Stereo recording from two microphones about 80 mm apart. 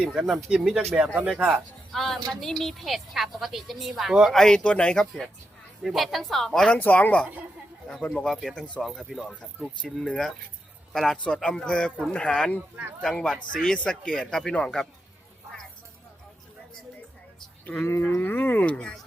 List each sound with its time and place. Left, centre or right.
0.0 s speech: centre
1.9 s a woman's voice: centre
4.4 s a woman's voice: centre
6.7 s speech: left
8.1 s a woman's voice: centre
17.7 s speech: left